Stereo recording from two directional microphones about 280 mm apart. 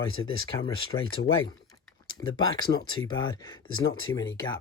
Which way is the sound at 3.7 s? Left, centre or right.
Left.